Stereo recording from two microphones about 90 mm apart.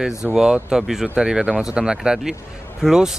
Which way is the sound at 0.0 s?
5° right (ahead or behind).